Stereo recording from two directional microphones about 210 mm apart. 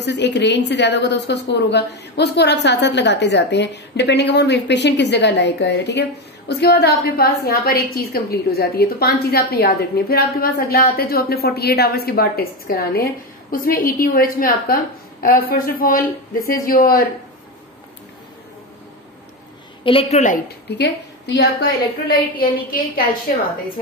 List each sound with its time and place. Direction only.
0.0 s a woman's voice: 55° left (ahead or behind)
19.8 s a woman's voice: 25° left (ahead or behind)
20.7 s a woman's voice: 55° left (ahead or behind)